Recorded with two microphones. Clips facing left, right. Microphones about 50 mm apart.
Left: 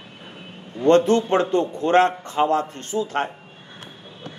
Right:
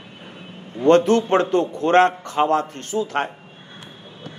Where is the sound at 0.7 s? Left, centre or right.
Right.